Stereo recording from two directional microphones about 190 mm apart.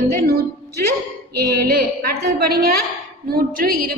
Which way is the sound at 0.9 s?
55° right (ahead or behind).